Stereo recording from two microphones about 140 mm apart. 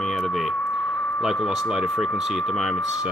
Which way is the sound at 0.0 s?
5° left (ahead or behind).